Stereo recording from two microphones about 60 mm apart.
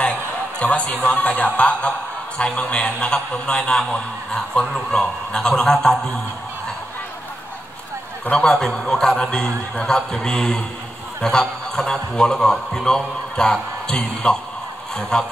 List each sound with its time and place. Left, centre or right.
0.0 s a sound: centre
1.0 s a man's voice: centre
8.3 s a man's voice: centre